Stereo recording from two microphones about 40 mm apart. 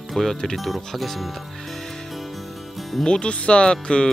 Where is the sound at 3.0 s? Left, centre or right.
Left.